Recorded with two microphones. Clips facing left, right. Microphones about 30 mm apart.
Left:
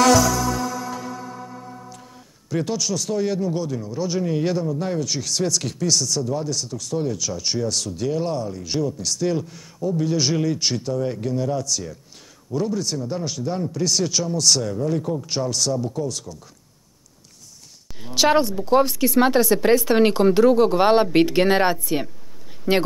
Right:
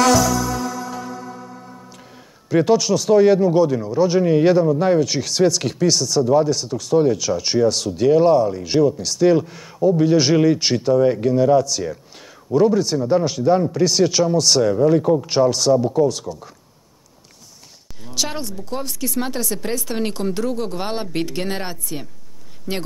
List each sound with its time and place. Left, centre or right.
0.0 s music: centre
2.5 s speech: right
18.0 s speech: left